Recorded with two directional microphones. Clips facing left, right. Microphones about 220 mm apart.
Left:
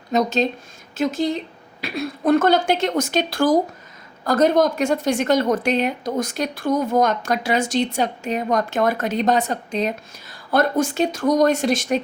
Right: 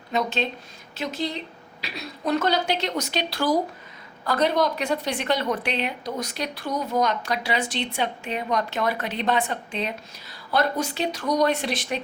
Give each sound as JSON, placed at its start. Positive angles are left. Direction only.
{"t": 0.1, "sound": "a woman's voice", "side_deg": 40}